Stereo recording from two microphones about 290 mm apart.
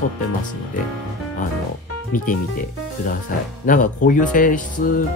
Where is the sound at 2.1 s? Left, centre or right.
Left.